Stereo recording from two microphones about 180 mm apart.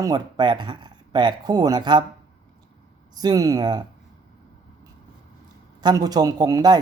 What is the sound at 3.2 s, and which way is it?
Speech, 20° right (ahead or behind).